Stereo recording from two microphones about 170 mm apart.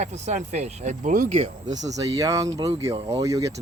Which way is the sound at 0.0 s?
45° right (ahead or behind).